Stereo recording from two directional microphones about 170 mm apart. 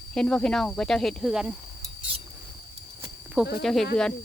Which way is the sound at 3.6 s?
Centre (ahead or behind).